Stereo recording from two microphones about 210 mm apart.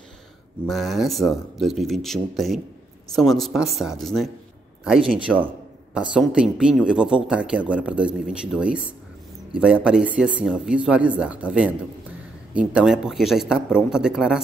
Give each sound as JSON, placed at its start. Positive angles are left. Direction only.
{"t": 0.7, "sound": "speech", "side_deg": 0}